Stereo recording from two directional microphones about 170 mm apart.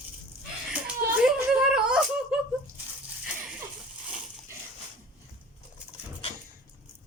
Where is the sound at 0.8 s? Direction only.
5° right (ahead or behind).